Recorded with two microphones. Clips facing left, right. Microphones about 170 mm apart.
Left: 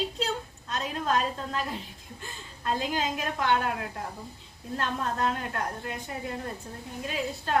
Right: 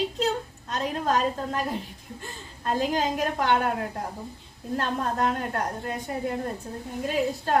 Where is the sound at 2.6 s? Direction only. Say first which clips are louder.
Right 4 dB; 40° right (ahead or behind).